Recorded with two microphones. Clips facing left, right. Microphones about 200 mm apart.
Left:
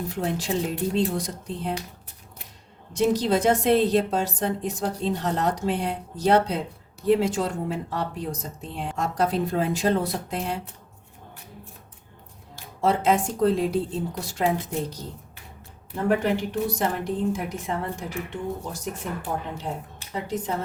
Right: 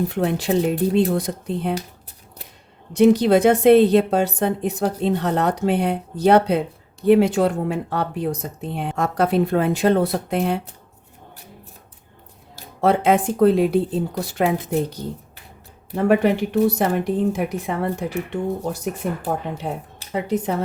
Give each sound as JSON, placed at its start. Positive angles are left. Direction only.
{"t": 0.1, "sound": "a woman's voice", "side_deg": -65}
{"t": 2.9, "sound": "a woman's voice", "side_deg": -65}
{"t": 13.1, "sound": "a woman's voice", "side_deg": -65}